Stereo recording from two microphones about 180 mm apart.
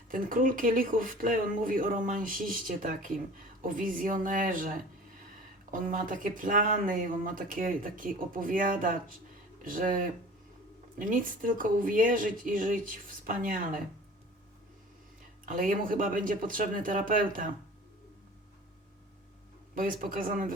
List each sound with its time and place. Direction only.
0.1 s speech: 50° right (ahead or behind)
15.4 s speech: 50° right (ahead or behind)
19.7 s speech: 50° right (ahead or behind)